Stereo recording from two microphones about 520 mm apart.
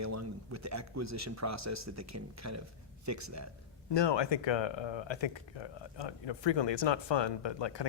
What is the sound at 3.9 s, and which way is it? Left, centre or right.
Speech, left.